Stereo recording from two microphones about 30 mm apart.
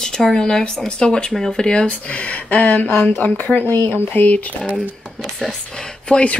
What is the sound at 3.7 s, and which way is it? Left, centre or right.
Speech, left.